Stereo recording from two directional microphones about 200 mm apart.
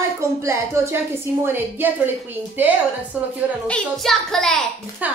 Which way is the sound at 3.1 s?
5° right (ahead or behind).